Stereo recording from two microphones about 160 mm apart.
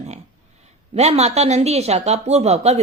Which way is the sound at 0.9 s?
40° right (ahead or behind).